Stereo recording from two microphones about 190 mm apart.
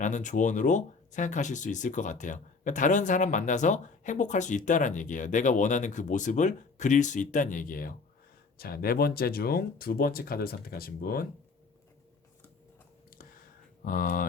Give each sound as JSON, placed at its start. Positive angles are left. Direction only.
{"t": 0.0, "sound": "speech", "side_deg": 40}
{"t": 13.8, "sound": "speech", "side_deg": 45}